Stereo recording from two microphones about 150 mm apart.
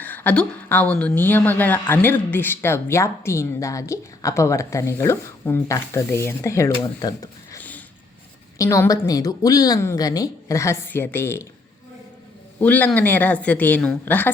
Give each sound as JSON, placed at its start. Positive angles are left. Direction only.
{"t": 0.0, "sound": "a woman's voice", "side_deg": 10}
{"t": 12.5, "sound": "a woman's voice", "side_deg": 10}